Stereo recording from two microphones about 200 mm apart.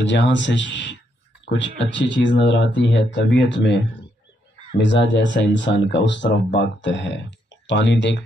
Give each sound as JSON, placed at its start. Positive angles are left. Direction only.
{"t": 0.0, "sound": "speech", "side_deg": 65}